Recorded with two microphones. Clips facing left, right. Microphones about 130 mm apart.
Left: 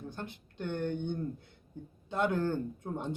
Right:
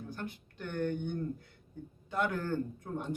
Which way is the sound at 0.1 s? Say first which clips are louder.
Right 1 dB; 20° left (ahead or behind).